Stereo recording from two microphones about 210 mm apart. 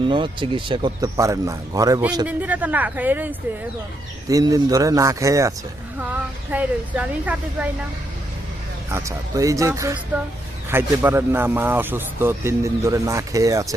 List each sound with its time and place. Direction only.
0.1 s speech: 25° right (ahead or behind); by 3.2 s 10° right (ahead or behind)
4.3 s speech: 15° right (ahead or behind)
8.9 s speech: 15° right (ahead or behind)